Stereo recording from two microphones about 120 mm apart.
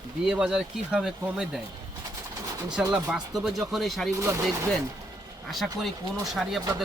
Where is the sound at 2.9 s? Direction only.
10° right (ahead or behind).